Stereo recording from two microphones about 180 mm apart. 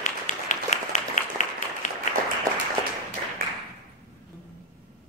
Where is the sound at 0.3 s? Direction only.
40° left (ahead or behind).